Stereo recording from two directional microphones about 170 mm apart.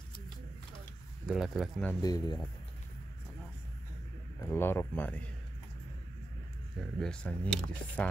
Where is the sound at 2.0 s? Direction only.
25° left (ahead or behind).